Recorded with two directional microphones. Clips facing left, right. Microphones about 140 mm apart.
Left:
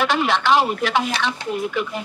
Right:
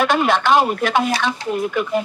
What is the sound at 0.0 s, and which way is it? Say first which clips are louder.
Speech: right 3 dB; 50° right (ahead or behind).